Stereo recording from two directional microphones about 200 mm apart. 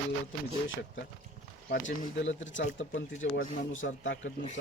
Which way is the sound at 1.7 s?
70° left (ahead or behind).